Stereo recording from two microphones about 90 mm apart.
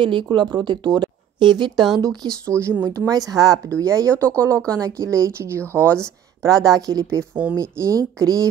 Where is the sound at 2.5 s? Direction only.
30° right (ahead or behind).